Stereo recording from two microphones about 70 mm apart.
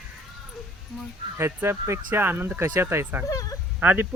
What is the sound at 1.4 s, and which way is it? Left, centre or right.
Speech, right.